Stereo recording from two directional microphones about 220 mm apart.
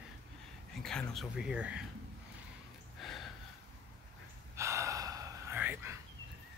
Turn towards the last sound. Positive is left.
turn(degrees=-10)  # may be behind; listen again after turning